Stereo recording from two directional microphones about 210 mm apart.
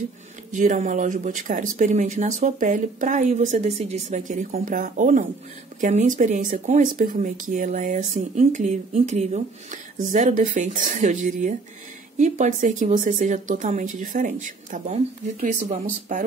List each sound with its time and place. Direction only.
0.5 s speech: 35° right (ahead or behind)